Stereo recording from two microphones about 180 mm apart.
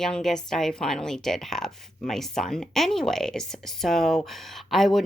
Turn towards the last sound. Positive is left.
turn(degrees=0)  # may be behind; listen again after turning